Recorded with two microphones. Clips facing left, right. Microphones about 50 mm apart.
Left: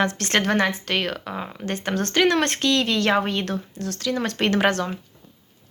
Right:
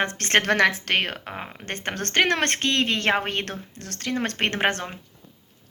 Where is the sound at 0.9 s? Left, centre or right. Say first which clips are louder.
Left 1 dB; right.